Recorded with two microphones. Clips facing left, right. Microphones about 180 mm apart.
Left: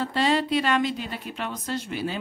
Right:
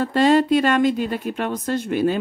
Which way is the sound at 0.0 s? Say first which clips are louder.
Right 7 dB; 50° right (ahead or behind).